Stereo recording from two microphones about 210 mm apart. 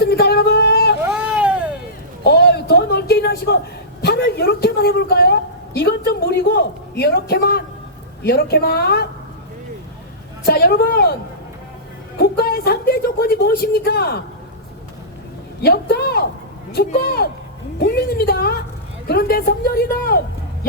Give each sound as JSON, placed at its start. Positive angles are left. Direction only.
{"t": 0.0, "sound": "a sound", "side_deg": 50}
{"t": 1.0, "sound": "vehicle", "side_deg": -5}
{"t": 2.2, "sound": "a sound", "side_deg": 50}
{"t": 4.0, "sound": "a woman's voice", "side_deg": 50}
{"t": 10.4, "sound": "a woman's voice", "side_deg": 50}
{"t": 12.1, "sound": "a woman's voice", "side_deg": 45}
{"t": 15.6, "sound": "a woman's voice", "side_deg": 50}